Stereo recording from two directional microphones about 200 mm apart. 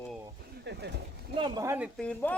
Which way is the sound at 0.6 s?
60° right (ahead or behind).